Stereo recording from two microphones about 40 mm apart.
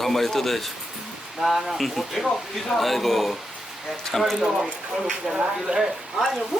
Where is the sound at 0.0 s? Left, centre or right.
Centre.